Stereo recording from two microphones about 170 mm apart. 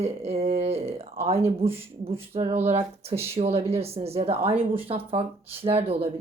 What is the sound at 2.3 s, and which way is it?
Speech, 35° right (ahead or behind).